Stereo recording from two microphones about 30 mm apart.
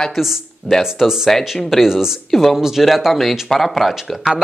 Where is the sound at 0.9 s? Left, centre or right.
Centre.